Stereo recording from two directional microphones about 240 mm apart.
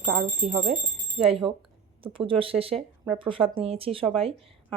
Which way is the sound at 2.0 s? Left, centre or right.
Right.